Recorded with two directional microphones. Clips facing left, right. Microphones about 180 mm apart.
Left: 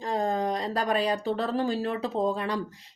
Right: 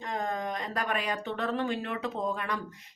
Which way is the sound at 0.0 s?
30° left (ahead or behind).